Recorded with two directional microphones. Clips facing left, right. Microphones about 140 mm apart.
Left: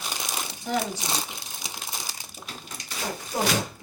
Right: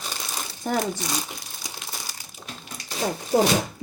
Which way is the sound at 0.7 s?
50° right (ahead or behind).